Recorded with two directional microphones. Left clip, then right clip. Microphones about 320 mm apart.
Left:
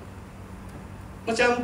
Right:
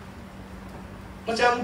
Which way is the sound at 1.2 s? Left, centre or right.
Left.